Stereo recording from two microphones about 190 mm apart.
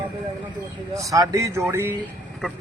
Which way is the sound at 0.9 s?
15° right (ahead or behind).